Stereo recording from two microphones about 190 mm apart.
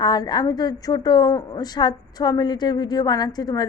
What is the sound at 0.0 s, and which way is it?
A woman's voice, 20° left (ahead or behind).